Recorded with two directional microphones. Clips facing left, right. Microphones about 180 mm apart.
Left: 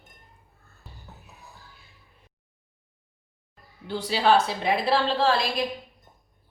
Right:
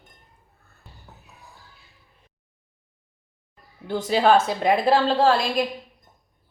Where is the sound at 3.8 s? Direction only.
50° right (ahead or behind).